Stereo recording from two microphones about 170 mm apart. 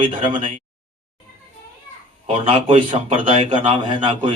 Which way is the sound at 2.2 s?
35° right (ahead or behind).